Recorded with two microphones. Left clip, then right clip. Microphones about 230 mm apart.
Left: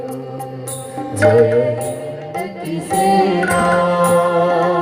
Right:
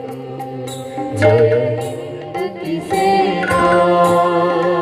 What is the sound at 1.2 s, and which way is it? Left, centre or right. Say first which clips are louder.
Music: left 1 dB; left.